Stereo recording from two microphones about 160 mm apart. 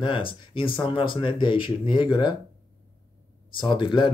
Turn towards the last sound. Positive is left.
turn(degrees=30)  # may be behind; listen again after turning